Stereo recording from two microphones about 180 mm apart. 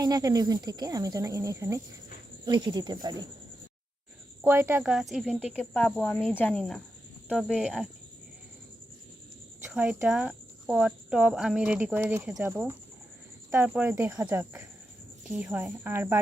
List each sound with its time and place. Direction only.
0.0 s speech: 20° right (ahead or behind)
4.4 s speech: 15° right (ahead or behind)
5.5 s speech: 10° left (ahead or behind)
9.6 s speech: 10° right (ahead or behind)